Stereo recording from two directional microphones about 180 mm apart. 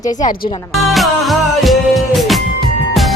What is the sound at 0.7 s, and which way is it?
Music, centre (ahead or behind).